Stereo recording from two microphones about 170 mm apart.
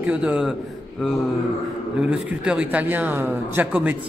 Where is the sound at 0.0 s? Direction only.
5° right (ahead or behind).